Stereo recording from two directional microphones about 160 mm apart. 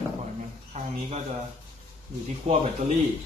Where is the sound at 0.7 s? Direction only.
45° right (ahead or behind).